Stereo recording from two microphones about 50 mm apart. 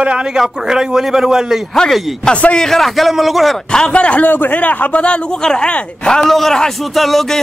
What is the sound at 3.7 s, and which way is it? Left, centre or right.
Speech, centre.